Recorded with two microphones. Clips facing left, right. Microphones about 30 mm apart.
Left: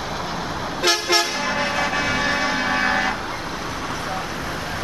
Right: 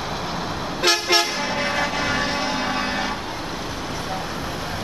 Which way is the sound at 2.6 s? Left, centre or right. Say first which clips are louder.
Left 4 dB; left.